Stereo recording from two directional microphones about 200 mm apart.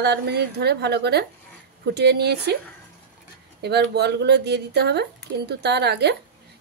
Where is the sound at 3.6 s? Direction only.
55° right (ahead or behind).